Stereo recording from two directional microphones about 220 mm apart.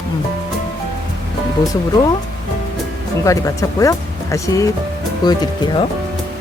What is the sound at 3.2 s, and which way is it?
Speech, 15° left (ahead or behind).